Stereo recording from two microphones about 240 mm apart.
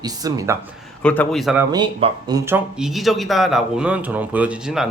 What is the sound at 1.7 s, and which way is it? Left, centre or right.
Speech, centre.